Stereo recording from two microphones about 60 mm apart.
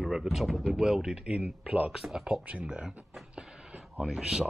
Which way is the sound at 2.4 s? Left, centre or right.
Centre.